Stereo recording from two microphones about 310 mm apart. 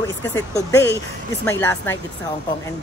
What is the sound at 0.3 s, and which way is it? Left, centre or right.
Speech, centre.